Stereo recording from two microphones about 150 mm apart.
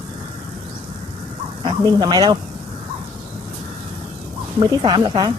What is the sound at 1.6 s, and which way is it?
Speech, 30° right (ahead or behind).